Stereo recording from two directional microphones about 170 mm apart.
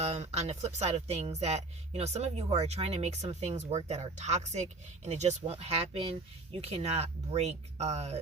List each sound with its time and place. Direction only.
0.0 s speech: 40° right (ahead or behind)